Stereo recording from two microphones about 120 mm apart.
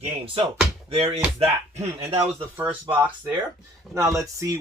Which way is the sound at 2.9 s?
15° right (ahead or behind).